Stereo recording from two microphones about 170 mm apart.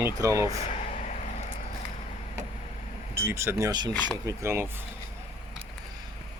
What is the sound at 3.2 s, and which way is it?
Speech, 15° right (ahead or behind).